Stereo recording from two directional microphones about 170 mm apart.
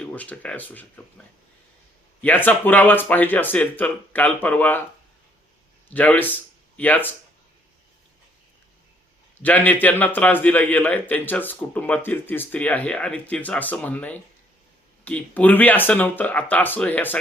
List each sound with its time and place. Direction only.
0.0 s a man's voice: 10° left (ahead or behind)
2.2 s a man's voice: 10° left (ahead or behind)
5.9 s a man's voice: 10° left (ahead or behind)
9.4 s a man's voice: 10° left (ahead or behind)